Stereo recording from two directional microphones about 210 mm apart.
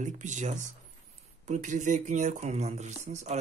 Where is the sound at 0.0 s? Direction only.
35° right (ahead or behind).